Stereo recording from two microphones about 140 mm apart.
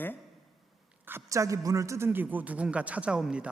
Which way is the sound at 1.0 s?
20° right (ahead or behind).